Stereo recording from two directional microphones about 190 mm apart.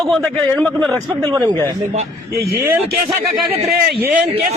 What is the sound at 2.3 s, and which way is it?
Speech, 55° right (ahead or behind).